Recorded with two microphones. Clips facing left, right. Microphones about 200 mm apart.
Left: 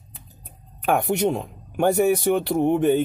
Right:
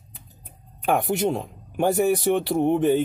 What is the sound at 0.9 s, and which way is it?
Speech, centre (ahead or behind).